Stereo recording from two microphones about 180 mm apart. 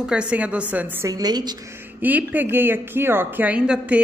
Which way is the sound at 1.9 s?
10° right (ahead or behind).